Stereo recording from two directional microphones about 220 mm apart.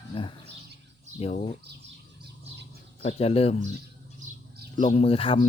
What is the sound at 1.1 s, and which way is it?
Speech, 30° left (ahead or behind).